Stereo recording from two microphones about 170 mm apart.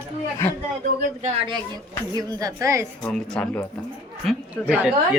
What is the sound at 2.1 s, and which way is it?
Speech, 20° right (ahead or behind).